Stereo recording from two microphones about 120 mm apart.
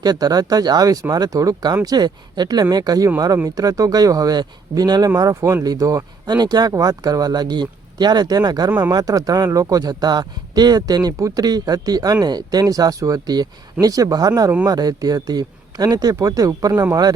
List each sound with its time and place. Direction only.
0.0 s speech: 35° right (ahead or behind)